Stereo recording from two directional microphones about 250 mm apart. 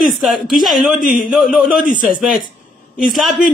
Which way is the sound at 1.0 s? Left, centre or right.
Left.